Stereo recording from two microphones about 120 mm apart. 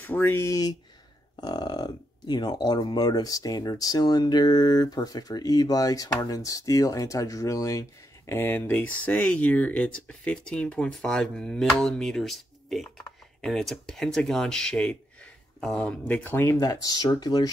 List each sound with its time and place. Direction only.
0.0 s speech: 15° left (ahead or behind)
8.3 s speech: 15° left (ahead or behind); by 17.5 s 35° left (ahead or behind)